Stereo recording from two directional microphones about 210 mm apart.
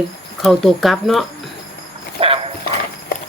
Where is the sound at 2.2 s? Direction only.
25° right (ahead or behind).